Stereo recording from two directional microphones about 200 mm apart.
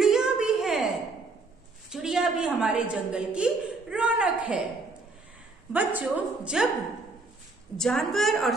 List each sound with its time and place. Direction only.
0.0 s a sound: 5° right (ahead or behind)
1.9 s a woman's voice: centre (ahead or behind)
5.7 s a woman's voice: 10° right (ahead or behind)
7.7 s a woman's voice: 5° left (ahead or behind)